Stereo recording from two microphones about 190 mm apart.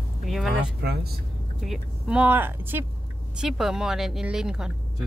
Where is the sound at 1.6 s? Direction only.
5° right (ahead or behind).